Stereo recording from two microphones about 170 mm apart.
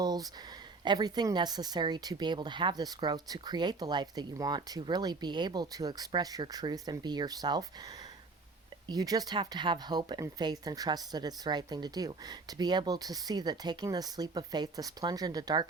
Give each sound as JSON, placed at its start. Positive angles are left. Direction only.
{"t": 0.0, "sound": "a sound", "side_deg": -25}
{"t": 0.9, "sound": "speech", "side_deg": -25}
{"t": 8.9, "sound": "speech", "side_deg": -20}